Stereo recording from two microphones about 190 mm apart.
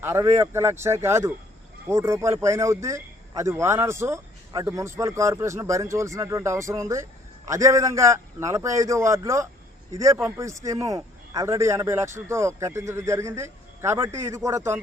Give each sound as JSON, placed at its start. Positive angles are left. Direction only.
{"t": 0.0, "sound": "speech", "side_deg": -15}